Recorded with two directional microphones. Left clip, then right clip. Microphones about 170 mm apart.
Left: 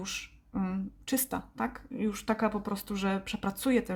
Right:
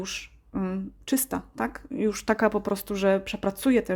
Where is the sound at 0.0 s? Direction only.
35° right (ahead or behind).